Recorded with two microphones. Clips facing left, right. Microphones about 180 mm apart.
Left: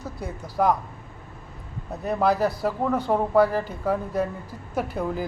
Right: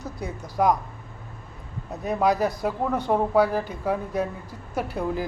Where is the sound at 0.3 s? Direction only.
5° left (ahead or behind).